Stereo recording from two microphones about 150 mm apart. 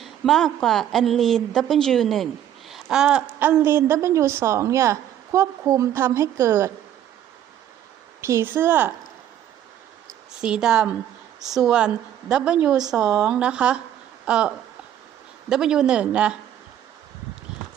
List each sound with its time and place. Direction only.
0.0 s a woman's voice: centre (ahead or behind); by 6.7 s 20° right (ahead or behind)
8.2 s a woman's voice: 15° right (ahead or behind)
10.4 s a woman's voice: 5° right (ahead or behind)